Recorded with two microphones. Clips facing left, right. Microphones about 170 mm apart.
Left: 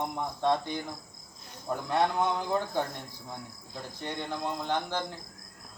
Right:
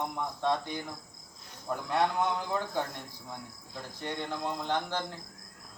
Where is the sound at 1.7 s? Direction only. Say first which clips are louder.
Left 1 dB; 20° left (ahead or behind).